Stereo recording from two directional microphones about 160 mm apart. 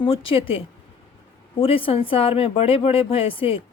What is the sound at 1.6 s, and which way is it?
Speech, 35° left (ahead or behind).